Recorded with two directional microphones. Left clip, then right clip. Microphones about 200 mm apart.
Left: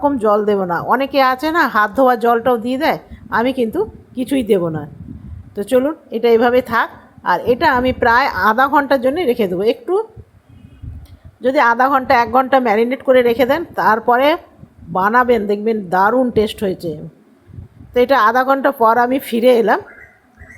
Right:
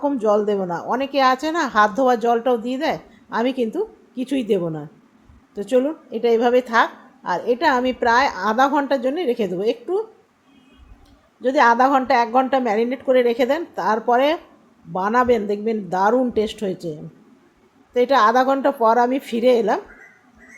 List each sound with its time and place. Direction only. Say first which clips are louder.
0.0 s a woman's voice: left 4 dB; 15° left (ahead or behind)
11.3 s a woman's voice: left 2 dB; 15° left (ahead or behind)